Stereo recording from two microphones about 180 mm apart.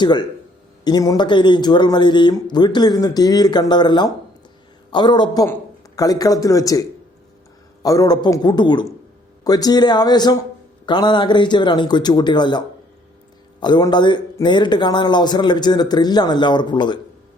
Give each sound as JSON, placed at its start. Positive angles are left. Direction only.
{"t": 0.0, "sound": "a man's voice", "side_deg": 25}